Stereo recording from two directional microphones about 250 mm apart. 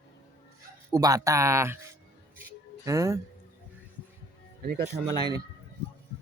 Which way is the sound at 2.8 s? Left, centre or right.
Centre.